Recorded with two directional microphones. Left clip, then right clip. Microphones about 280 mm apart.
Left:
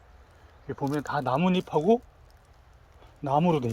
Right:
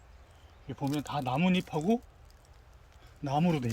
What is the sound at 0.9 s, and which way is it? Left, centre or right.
Speech, centre.